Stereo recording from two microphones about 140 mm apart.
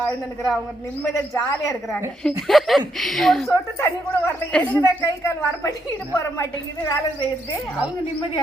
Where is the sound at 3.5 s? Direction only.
20° left (ahead or behind).